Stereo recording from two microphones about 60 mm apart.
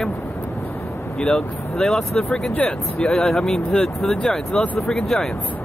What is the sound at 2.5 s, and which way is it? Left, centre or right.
Speech, left.